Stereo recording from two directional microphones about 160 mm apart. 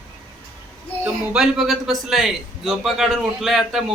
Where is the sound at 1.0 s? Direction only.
5° right (ahead or behind).